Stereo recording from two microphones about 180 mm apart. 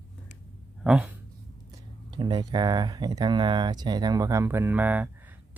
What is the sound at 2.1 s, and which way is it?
Speech, 25° right (ahead or behind).